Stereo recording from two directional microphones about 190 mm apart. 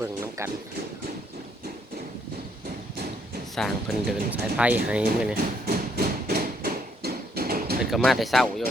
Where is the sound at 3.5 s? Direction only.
Centre (ahead or behind).